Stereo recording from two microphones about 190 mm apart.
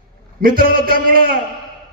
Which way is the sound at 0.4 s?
50° right (ahead or behind).